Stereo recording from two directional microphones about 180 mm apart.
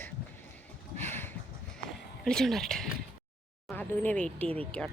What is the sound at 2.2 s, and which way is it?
Speech, centre (ahead or behind).